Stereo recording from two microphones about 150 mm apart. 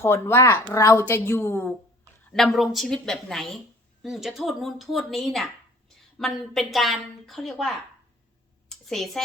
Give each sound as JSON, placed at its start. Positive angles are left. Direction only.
{"t": 0.0, "sound": "a woman's voice", "side_deg": 15}
{"t": 2.3, "sound": "a woman's voice", "side_deg": 0}
{"t": 8.7, "sound": "a woman's voice", "side_deg": 0}